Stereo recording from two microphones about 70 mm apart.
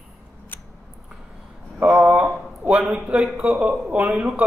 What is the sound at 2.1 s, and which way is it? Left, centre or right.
Speech, centre.